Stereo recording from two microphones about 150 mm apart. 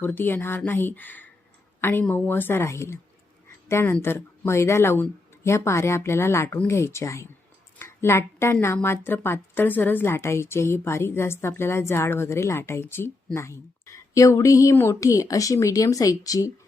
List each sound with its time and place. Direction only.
0.0 s a woman's voice: 15° left (ahead or behind)